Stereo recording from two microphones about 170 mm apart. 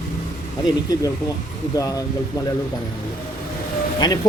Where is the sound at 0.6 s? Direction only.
20° left (ahead or behind).